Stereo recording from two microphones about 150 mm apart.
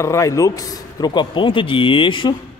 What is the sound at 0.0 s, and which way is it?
A man's voice, 20° left (ahead or behind).